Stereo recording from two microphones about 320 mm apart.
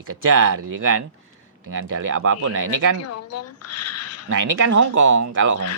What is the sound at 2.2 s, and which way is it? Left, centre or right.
Speech, right.